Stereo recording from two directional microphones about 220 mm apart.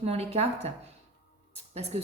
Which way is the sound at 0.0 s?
30° right (ahead or behind).